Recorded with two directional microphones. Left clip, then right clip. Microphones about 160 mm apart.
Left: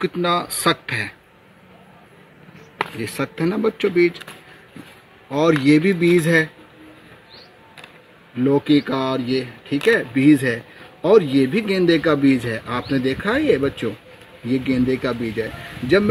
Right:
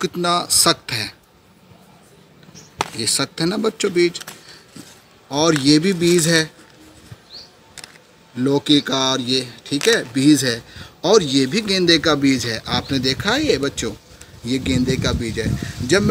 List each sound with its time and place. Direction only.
0.0 s speech: centre (ahead or behind)
3.0 s speech: 5° left (ahead or behind)
5.5 s speech: centre (ahead or behind)
8.5 s speech: 5° left (ahead or behind)